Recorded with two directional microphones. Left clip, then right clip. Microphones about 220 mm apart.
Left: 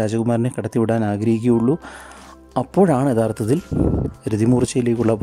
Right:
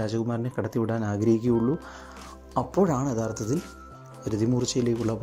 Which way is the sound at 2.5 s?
45° left (ahead or behind).